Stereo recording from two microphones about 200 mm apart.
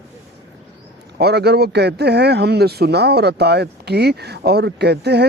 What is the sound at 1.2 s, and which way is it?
Speech, 55° right (ahead or behind).